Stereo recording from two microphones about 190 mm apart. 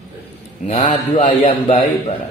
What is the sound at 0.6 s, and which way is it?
Speech, 35° left (ahead or behind).